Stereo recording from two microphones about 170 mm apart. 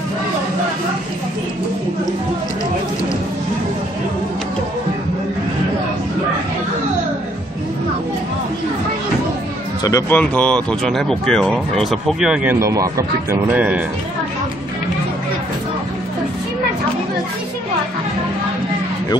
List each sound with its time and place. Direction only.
9.8 s speech: 15° left (ahead or behind); by 12.5 s 5° right (ahead or behind)
12.5 s speech: 20° right (ahead or behind)